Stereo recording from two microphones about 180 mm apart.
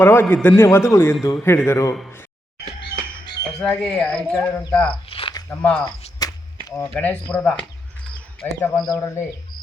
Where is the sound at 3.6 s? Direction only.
5° left (ahead or behind).